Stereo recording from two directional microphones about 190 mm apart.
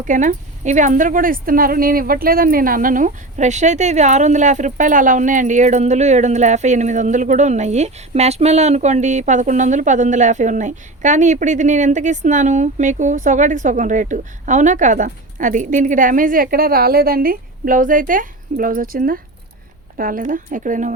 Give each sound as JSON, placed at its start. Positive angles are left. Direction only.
{"t": 0.0, "sound": "a woman's voice", "side_deg": -40}